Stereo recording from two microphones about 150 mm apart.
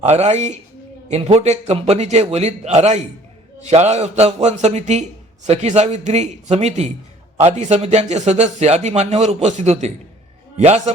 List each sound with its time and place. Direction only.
0.0 s a man's voice: 45° right (ahead or behind)